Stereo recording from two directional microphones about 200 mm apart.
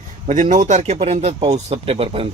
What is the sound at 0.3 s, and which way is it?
A man's voice, 40° right (ahead or behind).